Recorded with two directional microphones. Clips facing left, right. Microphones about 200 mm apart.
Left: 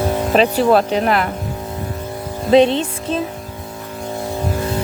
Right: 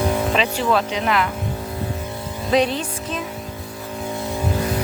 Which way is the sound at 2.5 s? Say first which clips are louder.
Left 7 dB; 25° left (ahead or behind).